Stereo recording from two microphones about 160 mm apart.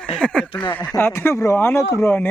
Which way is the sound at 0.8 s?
20° left (ahead or behind).